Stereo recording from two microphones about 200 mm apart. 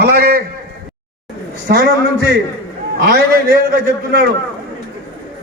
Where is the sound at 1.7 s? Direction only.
50° right (ahead or behind).